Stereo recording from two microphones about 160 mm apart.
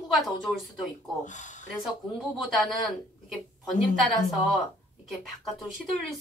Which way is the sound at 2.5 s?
Centre (ahead or behind).